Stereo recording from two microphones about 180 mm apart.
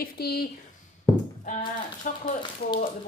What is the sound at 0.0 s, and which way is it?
Speech, 60° left (ahead or behind).